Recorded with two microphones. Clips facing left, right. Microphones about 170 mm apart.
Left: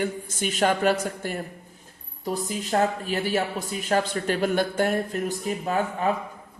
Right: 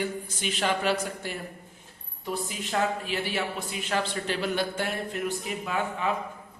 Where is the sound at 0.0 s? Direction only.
45° left (ahead or behind).